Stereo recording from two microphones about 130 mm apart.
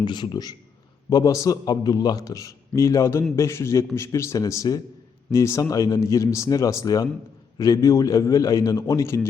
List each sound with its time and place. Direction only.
0.0 s a man's voice: 35° left (ahead or behind)